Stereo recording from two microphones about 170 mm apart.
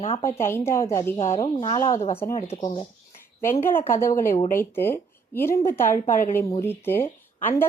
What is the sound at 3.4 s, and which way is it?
A woman's voice, 15° left (ahead or behind).